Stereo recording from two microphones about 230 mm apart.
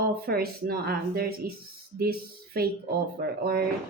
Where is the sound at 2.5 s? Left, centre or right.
Right.